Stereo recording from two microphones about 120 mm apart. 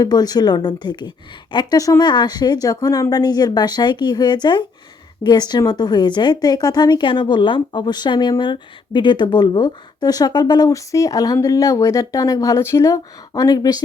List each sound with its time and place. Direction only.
0.0 s a woman's voice: 35° left (ahead or behind)